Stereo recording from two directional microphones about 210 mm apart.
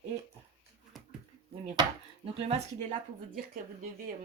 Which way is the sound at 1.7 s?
25° right (ahead or behind).